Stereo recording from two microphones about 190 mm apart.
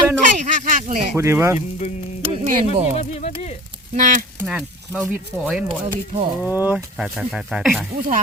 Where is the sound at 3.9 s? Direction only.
40° right (ahead or behind).